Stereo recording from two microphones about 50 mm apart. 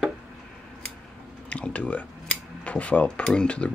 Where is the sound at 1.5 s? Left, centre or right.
Left.